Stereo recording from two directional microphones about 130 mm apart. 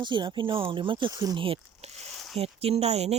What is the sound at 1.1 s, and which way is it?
Speech, 30° right (ahead or behind).